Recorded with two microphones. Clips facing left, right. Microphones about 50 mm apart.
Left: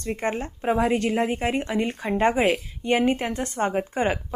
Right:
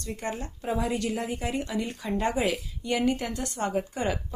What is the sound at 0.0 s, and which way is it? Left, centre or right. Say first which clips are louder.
A woman's voice: left 6 dB; left.